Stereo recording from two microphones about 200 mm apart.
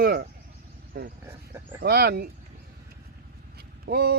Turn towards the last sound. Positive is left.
turn(degrees=-50)  # may be behind; listen again after turning